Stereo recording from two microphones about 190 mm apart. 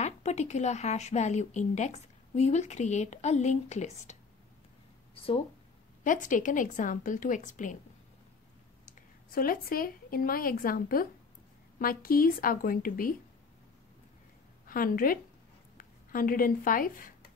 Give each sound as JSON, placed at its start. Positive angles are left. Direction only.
{"t": 0.0, "sound": "a woman's voice", "side_deg": 35}
{"t": 6.0, "sound": "a woman's voice", "side_deg": 40}
{"t": 8.8, "sound": "a woman's voice", "side_deg": 50}
{"t": 14.7, "sound": "a woman's voice", "side_deg": 50}